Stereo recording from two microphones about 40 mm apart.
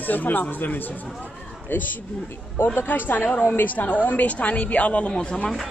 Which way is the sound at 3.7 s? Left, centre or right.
Left.